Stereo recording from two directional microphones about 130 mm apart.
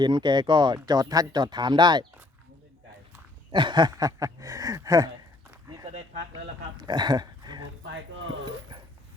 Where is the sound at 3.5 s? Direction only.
35° right (ahead or behind).